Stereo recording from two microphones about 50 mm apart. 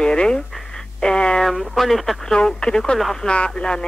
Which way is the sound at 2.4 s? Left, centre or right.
Centre.